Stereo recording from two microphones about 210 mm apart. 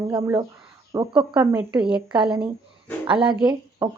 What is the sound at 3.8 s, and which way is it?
Speech, 15° right (ahead or behind).